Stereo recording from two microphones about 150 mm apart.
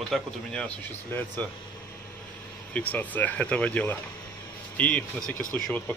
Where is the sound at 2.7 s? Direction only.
10° left (ahead or behind).